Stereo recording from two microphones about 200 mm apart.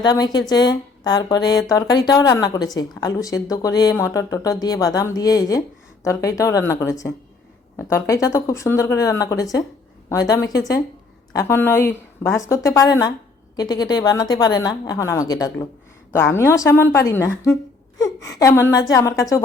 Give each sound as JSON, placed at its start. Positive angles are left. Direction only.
{"t": 0.0, "sound": "a woman's voice", "side_deg": 20}